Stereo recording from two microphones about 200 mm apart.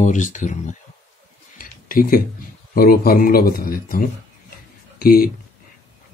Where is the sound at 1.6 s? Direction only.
45° left (ahead or behind).